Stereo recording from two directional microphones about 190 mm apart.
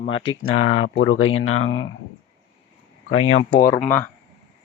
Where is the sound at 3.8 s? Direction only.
10° left (ahead or behind).